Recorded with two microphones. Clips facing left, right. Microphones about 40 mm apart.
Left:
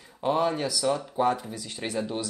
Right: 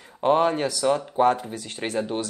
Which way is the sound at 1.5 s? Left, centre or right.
Right.